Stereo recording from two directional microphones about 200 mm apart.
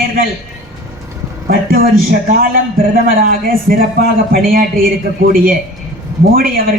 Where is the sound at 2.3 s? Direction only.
45° right (ahead or behind).